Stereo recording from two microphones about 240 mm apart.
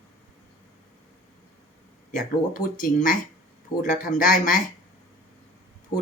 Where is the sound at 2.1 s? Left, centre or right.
Left.